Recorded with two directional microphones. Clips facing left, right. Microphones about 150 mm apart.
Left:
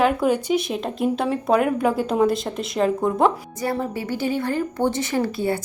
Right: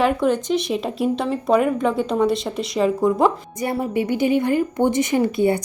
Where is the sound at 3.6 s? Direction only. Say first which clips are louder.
Right 3 dB; 15° right (ahead or behind).